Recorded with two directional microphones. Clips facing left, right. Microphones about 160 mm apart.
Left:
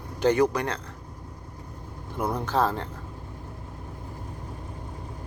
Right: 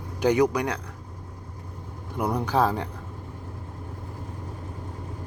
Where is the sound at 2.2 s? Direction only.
15° right (ahead or behind).